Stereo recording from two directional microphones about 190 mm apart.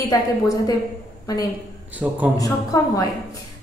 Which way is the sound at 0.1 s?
20° left (ahead or behind).